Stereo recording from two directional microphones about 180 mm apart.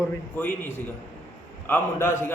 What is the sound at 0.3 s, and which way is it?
A man's voice, 10° left (ahead or behind).